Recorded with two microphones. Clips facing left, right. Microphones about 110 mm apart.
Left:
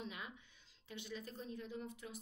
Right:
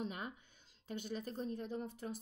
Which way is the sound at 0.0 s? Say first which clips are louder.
Right 6 dB; 40° right (ahead or behind).